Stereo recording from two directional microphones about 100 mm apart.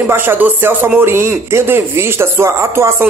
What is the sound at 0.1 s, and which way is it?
Speech, 20° right (ahead or behind).